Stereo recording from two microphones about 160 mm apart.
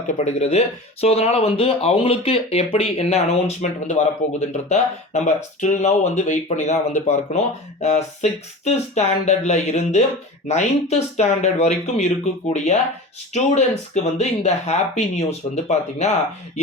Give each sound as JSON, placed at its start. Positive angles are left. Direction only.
{"t": 0.3, "sound": "speech", "side_deg": 40}